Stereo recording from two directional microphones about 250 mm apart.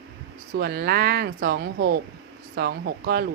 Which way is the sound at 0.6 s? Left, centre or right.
Right.